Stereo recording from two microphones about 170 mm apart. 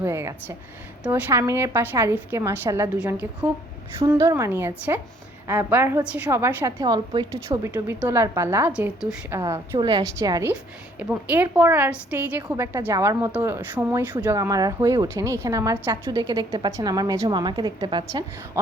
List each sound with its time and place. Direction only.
0.0 s a woman's voice: 15° right (ahead or behind)
9.3 s a woman's voice: 15° right (ahead or behind)
14.3 s a woman's voice: 20° right (ahead or behind)